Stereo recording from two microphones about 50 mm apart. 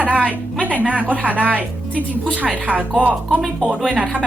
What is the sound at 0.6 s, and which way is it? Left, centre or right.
A woman's voice, right.